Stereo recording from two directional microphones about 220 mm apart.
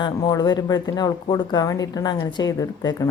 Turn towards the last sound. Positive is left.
turn(degrees=15)  # may be behind; listen again after turning